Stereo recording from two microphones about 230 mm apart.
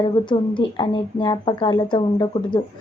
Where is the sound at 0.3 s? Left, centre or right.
Left.